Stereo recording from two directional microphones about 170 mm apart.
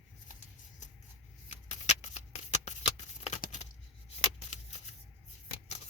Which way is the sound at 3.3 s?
45° left (ahead or behind).